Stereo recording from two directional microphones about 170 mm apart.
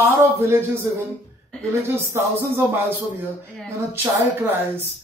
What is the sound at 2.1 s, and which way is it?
Speech, 15° right (ahead or behind).